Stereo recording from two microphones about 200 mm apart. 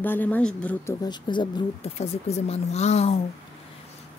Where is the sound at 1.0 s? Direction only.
20° left (ahead or behind).